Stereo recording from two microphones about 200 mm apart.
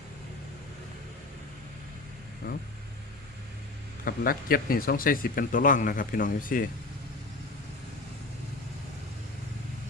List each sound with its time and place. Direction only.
2.4 s speech: 45° left (ahead or behind)
4.0 s speech: 45° left (ahead or behind)